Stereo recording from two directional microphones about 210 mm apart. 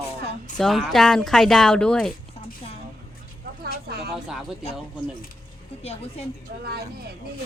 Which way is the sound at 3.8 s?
50° right (ahead or behind).